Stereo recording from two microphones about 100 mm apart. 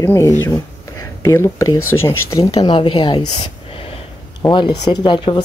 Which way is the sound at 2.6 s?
60° left (ahead or behind).